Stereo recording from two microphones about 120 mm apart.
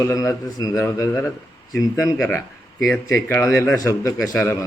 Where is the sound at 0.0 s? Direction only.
30° left (ahead or behind).